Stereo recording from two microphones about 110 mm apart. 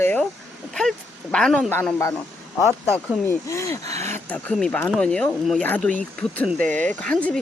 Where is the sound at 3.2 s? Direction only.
25° left (ahead or behind).